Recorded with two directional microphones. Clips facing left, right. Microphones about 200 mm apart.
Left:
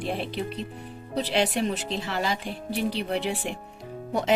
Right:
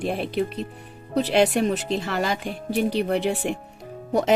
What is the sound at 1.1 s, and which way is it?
Speech, 50° right (ahead or behind).